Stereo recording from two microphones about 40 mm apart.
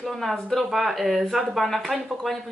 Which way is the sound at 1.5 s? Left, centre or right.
Centre.